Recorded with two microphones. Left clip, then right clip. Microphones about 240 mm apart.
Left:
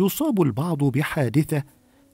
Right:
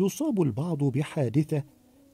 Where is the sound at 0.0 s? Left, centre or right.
Left.